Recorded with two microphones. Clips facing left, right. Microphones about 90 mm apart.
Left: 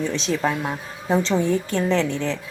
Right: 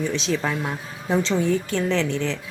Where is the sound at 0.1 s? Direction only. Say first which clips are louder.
Left 1 dB; 5° left (ahead or behind).